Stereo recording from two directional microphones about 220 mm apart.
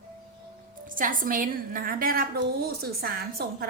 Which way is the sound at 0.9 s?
40° right (ahead or behind).